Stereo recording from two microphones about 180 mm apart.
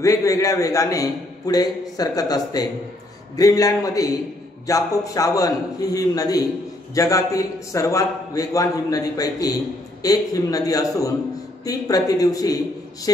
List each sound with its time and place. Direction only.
0.0 s a man's voice: 20° left (ahead or behind)